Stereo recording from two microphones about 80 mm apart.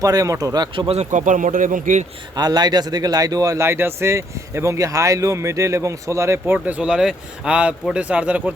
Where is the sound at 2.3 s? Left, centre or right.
Right.